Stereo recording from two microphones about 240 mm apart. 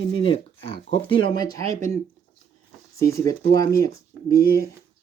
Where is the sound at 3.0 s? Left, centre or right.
Centre.